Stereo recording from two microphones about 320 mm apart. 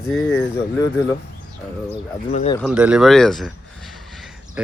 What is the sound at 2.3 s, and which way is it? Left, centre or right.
Speech, left.